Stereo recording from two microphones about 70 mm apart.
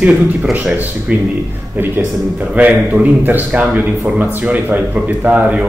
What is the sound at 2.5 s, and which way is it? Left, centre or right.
Speech, right.